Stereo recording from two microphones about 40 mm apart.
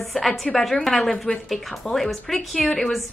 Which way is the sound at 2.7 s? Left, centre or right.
Centre.